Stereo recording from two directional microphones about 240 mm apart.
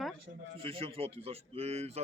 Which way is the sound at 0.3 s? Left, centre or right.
Right.